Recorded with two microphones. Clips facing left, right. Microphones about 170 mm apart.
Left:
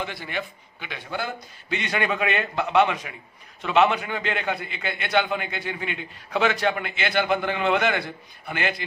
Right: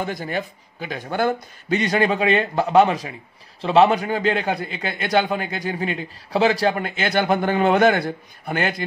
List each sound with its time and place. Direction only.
0.0 s a man's voice: 45° right (ahead or behind)